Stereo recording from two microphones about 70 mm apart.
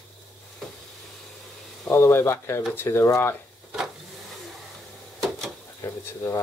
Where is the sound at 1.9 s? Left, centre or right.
Left.